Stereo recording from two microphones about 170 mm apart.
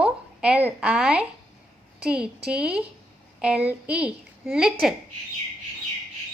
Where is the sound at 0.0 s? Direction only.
5° right (ahead or behind).